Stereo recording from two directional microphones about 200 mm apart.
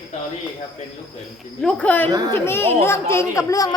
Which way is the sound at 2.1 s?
20° right (ahead or behind).